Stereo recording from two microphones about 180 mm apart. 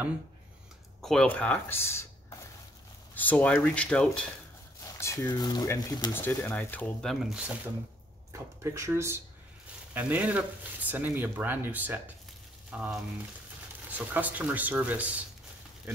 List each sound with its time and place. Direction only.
1.0 s speech: 5° left (ahead or behind)
5.0 s speech: 20° left (ahead or behind)
6.1 s speech: 10° left (ahead or behind)
8.3 s speech: 15° right (ahead or behind)